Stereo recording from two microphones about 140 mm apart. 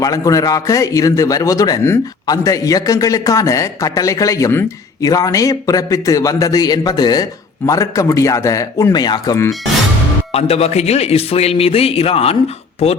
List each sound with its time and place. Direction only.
0.0 s a man's voice: 25° left (ahead or behind)
10.3 s a man's voice: 45° left (ahead or behind)